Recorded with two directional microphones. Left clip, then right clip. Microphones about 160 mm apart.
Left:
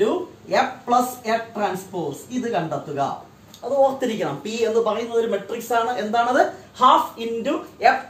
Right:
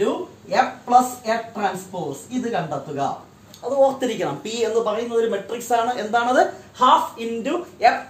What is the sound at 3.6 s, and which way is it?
A woman's voice, 30° right (ahead or behind).